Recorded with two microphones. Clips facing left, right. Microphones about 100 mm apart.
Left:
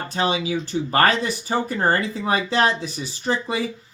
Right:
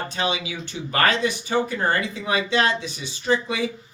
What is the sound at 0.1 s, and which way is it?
Speech, 40° left (ahead or behind).